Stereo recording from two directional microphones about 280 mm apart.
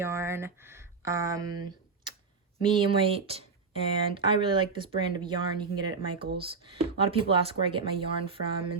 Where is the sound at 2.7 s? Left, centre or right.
Centre.